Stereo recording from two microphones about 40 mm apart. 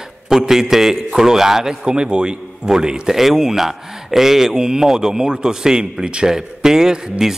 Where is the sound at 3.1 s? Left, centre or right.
Centre.